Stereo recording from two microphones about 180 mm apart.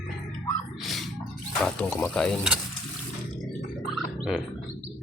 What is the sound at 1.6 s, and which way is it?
Speech, 5° left (ahead or behind).